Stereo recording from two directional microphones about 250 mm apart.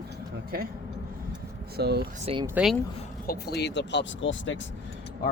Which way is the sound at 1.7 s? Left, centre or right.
Right.